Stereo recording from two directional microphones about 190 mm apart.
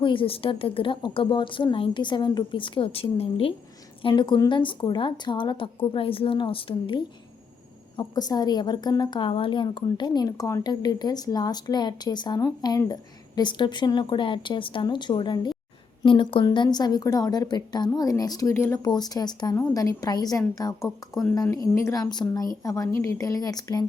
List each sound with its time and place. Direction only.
0.0 s a woman's voice: 25° left (ahead or behind)
20.8 s speech: centre (ahead or behind)
21.5 s a woman's voice: 15° left (ahead or behind)